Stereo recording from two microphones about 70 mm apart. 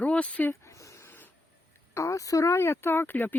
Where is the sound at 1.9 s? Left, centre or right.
Left.